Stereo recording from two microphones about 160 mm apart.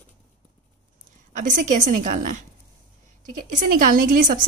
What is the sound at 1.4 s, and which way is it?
Speech, 55° right (ahead or behind).